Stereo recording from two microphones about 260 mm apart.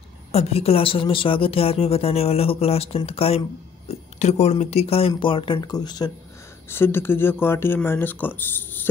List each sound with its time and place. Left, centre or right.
0.3 s a woman's voice: left; by 8.8 s centre